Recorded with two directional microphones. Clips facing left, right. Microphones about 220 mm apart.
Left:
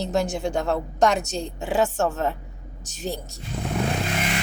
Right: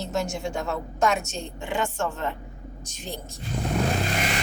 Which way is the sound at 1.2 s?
35° left (ahead or behind).